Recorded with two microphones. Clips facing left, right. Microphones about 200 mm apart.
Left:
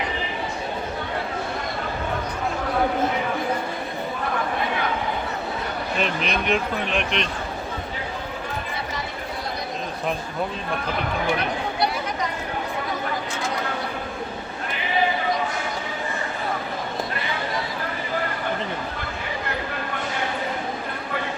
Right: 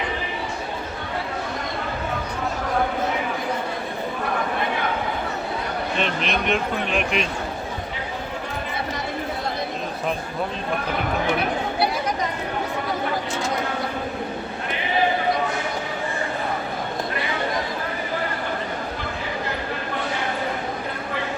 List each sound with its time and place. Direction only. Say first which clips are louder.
6.0 s speech: left 1 dB; centre (ahead or behind)